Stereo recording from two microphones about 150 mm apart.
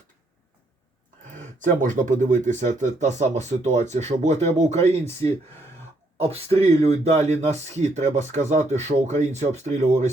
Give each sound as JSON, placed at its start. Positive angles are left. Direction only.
{"t": 1.3, "sound": "speech", "side_deg": -60}
{"t": 6.1, "sound": "speech", "side_deg": -45}